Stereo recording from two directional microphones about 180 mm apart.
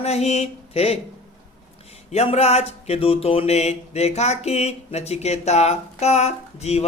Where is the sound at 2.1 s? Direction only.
35° left (ahead or behind).